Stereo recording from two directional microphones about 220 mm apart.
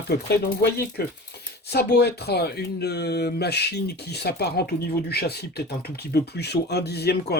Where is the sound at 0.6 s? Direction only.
45° left (ahead or behind).